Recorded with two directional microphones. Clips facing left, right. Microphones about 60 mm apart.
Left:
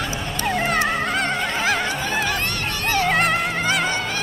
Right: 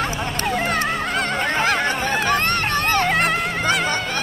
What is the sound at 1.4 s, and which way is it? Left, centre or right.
Honk, right.